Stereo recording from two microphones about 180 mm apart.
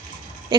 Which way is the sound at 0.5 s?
25° right (ahead or behind).